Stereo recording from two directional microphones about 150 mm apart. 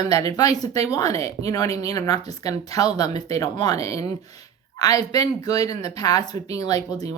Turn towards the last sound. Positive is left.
turn(degrees=25)  # may be behind; listen again after turning